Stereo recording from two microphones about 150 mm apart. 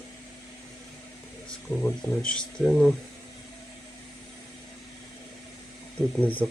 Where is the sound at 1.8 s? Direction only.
5° left (ahead or behind).